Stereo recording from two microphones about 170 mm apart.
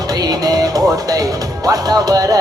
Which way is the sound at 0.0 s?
20° right (ahead or behind).